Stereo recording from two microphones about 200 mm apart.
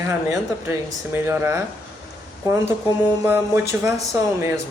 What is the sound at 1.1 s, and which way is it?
Speech, 10° right (ahead or behind).